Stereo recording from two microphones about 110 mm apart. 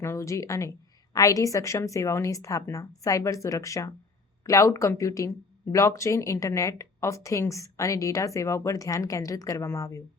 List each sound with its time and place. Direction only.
0.0 s a woman's voice: 25° left (ahead or behind)